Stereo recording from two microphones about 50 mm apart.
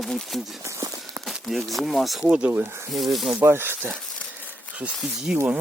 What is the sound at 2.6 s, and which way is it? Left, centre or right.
Speech, right.